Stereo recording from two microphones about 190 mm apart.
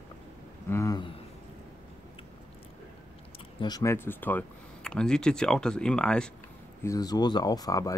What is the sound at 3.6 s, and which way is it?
Speech, 20° left (ahead or behind).